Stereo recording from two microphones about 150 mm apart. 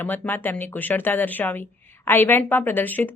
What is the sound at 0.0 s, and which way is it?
A woman's voice, 10° left (ahead or behind).